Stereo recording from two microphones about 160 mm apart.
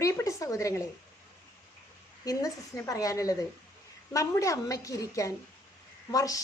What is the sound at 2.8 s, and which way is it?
A woman's voice, 20° left (ahead or behind).